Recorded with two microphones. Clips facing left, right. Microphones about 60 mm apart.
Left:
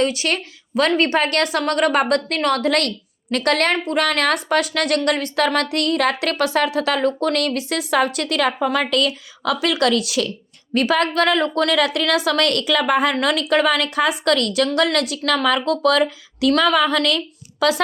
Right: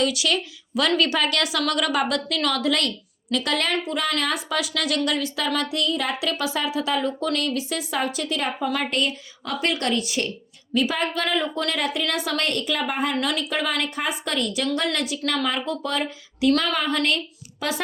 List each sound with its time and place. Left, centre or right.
0.0 s a woman's voice: left
4.4 s speech: left
8.5 s a woman's voice: left
10.8 s a woman's voice: left
13.1 s a woman's voice: left
16.5 s a woman's voice: left